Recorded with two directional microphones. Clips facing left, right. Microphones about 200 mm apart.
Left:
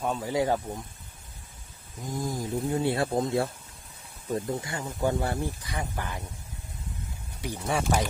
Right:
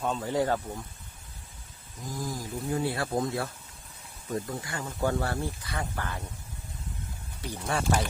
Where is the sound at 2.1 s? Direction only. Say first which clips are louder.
Left 4 dB; 25° left (ahead or behind).